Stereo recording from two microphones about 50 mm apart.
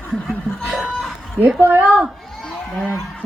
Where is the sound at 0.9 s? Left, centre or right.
Centre.